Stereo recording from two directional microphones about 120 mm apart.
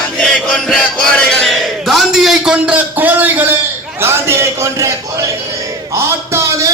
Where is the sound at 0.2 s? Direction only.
10° left (ahead or behind).